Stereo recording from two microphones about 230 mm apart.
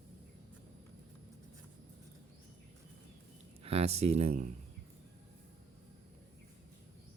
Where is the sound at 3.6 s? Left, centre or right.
Right.